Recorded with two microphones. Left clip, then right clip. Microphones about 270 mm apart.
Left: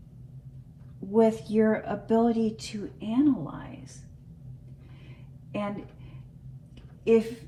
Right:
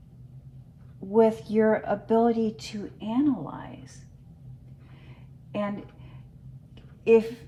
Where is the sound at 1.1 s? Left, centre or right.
Right.